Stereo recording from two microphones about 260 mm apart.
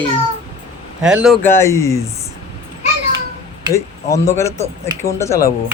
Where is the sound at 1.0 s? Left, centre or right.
Centre.